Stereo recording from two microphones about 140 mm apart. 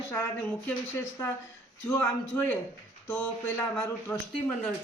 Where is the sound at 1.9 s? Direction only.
15° left (ahead or behind).